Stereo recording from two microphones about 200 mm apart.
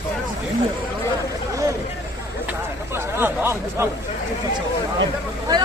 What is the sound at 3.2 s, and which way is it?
Speech, 10° right (ahead or behind).